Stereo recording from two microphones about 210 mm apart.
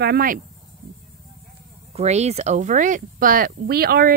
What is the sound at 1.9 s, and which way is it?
Speech, 30° right (ahead or behind).